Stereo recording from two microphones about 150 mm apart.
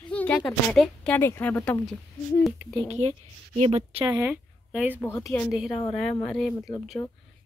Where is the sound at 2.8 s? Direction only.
45° right (ahead or behind).